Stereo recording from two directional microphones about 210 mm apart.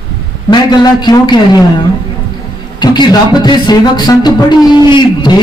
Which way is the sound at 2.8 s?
20° left (ahead or behind).